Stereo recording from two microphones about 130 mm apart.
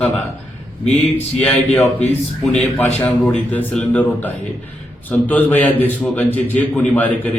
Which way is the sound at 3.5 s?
10° left (ahead or behind).